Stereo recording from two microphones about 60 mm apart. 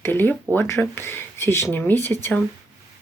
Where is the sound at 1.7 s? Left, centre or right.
Left.